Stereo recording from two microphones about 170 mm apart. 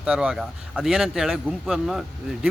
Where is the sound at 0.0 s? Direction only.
5° right (ahead or behind).